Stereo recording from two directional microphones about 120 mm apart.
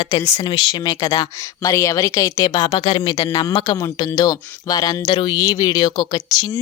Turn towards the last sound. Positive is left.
turn(degrees=35)  # may be behind; listen again after turning